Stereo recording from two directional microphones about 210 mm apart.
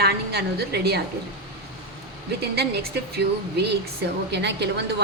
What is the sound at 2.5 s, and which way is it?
Speech, 50° right (ahead or behind).